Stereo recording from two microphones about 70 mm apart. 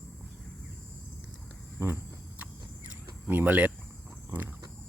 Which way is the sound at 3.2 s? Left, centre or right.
Right.